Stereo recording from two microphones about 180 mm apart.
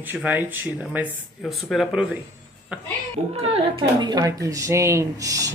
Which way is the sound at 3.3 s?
35° right (ahead or behind).